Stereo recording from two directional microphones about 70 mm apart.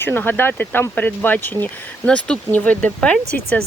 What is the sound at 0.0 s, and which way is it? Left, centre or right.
Speech, left.